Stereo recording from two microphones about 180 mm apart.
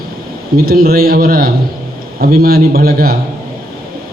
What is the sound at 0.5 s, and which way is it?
A man's voice, 55° right (ahead or behind).